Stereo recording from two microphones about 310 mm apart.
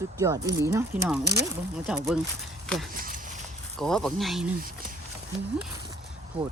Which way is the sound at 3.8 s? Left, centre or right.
Centre.